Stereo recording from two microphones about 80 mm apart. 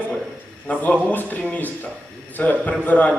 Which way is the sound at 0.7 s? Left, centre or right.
Left.